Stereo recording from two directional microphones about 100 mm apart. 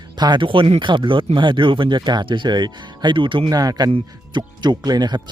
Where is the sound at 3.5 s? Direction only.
40° right (ahead or behind).